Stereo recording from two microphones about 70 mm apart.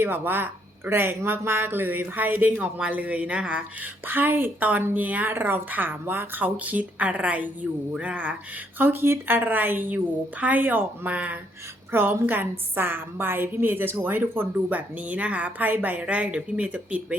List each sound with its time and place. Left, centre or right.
0.0 s a woman's voice: right
7.9 s a sound: centre
8.8 s a woman's voice: right